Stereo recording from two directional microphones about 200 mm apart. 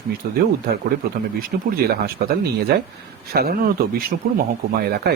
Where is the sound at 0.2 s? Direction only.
45° right (ahead or behind).